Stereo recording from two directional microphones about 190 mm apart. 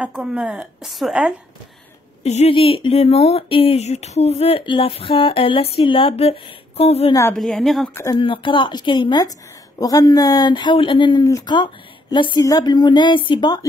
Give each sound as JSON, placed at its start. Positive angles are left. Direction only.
{"t": 0.0, "sound": "a woman's voice", "side_deg": -5}
{"t": 2.2, "sound": "speech", "side_deg": 35}
{"t": 7.3, "sound": "a woman's voice", "side_deg": 0}
{"t": 7.9, "sound": "speech", "side_deg": 15}
{"t": 8.2, "sound": "speech", "side_deg": 25}